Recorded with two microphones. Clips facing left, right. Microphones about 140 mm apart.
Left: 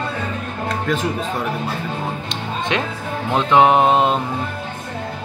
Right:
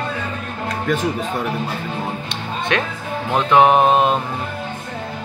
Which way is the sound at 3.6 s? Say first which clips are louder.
Even; 20° left (ahead or behind).